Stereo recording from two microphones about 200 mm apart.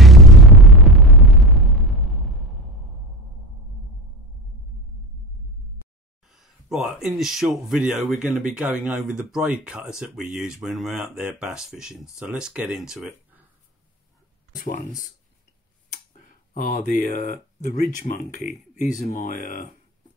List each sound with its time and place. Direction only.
0.0 s throbbing: centre (ahead or behind)
6.2 s speech: centre (ahead or behind)
14.6 s speech: 45° left (ahead or behind)
16.5 s speech: 40° left (ahead or behind)
17.0 s speech: 55° right (ahead or behind)
17.3 s speech: 40° left (ahead or behind)